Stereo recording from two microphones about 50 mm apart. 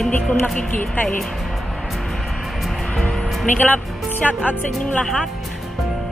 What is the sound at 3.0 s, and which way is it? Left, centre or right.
Music, centre.